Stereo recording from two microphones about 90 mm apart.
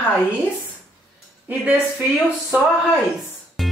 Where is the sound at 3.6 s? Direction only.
Centre (ahead or behind).